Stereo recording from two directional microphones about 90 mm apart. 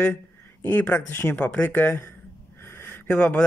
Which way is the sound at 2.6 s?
25° left (ahead or behind).